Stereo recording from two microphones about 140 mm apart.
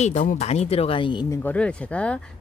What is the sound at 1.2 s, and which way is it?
Speech, 20° left (ahead or behind).